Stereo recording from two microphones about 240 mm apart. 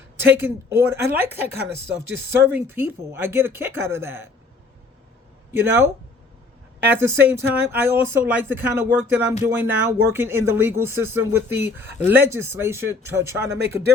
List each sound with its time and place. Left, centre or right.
0.3 s speech: centre
5.5 s speech: centre